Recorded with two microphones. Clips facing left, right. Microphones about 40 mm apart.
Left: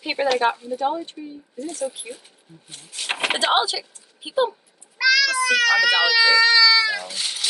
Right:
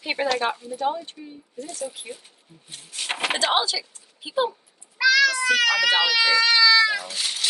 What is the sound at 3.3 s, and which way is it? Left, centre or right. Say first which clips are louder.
Speech: left 2 dB; centre.